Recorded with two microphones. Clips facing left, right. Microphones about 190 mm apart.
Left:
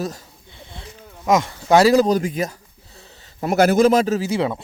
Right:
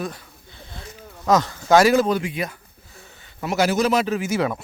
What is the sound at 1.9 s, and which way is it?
Speech, 35° left (ahead or behind).